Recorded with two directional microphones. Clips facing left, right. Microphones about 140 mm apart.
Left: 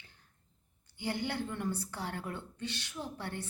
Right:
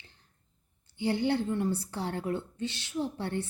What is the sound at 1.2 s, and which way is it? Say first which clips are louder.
A woman's voice: right 9 dB; 25° right (ahead or behind).